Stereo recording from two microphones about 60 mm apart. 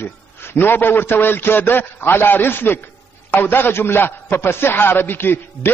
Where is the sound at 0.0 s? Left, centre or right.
Left.